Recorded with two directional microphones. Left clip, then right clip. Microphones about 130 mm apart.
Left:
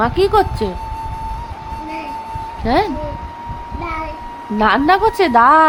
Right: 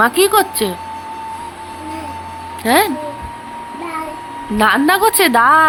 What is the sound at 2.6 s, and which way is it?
Speech, 5° left (ahead or behind).